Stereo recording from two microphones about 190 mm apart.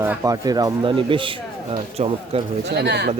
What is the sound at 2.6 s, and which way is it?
Speech, 60° right (ahead or behind).